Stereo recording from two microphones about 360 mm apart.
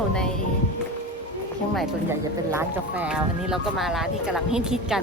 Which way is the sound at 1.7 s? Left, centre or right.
Centre.